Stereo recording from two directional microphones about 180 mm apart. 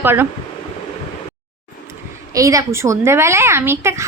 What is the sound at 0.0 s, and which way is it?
Speech, 10° right (ahead or behind).